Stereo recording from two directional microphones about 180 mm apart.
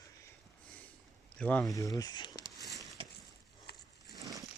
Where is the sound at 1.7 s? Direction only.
20° left (ahead or behind).